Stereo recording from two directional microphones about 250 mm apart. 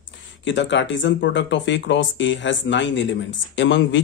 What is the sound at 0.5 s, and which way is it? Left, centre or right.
Speech, left.